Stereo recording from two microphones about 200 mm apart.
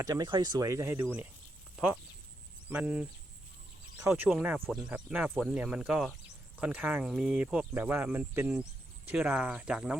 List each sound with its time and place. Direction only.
0.0 s speech: 20° right (ahead or behind)
2.6 s speech: 5° right (ahead or behind)